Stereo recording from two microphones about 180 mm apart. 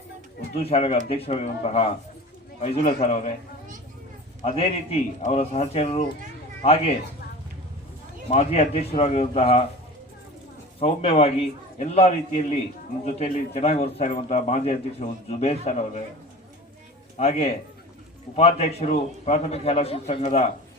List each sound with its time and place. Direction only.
0.5 s a man's voice: 35° left (ahead or behind)
4.4 s a man's voice: 35° left (ahead or behind)
8.3 s a man's voice: 35° left (ahead or behind)
10.8 s a man's voice: 35° left (ahead or behind)
17.2 s a man's voice: 35° left (ahead or behind)